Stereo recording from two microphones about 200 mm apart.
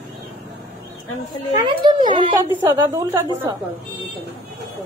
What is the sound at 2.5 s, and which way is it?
Speech, 10° right (ahead or behind).